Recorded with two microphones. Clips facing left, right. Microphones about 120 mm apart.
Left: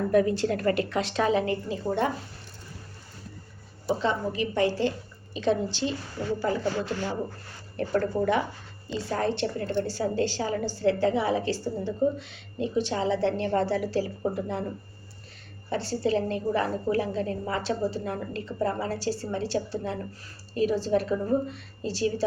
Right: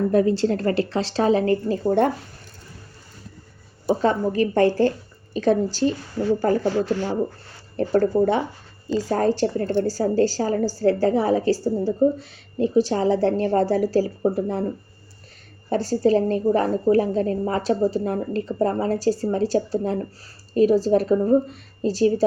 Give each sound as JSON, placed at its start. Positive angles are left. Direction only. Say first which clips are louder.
{"t": 0.1, "sound": "a woman's voice", "louder": "right 4 dB", "side_deg": -30}
{"t": 3.8, "sound": "a woman's voice", "louder": "right 6 dB", "side_deg": -45}
{"t": 15.7, "sound": "a woman's voice", "louder": "right 7 dB", "side_deg": -40}